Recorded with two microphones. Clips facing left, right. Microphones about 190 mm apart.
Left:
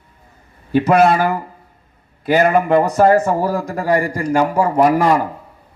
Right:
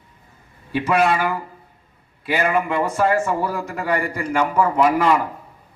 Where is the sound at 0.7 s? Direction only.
40° left (ahead or behind).